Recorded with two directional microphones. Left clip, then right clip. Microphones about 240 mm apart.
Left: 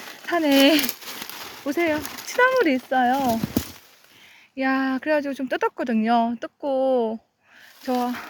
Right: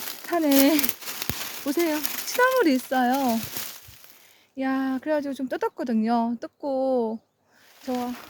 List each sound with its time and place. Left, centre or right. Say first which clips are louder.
0.3 s speech: left 3 dB; centre
4.5 s speech: left 4 dB; centre
7.8 s speech: left 5 dB; centre